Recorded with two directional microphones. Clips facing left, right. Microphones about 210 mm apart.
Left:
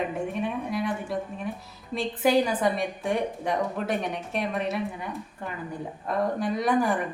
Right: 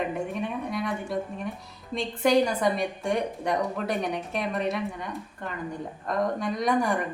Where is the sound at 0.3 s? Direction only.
Centre (ahead or behind).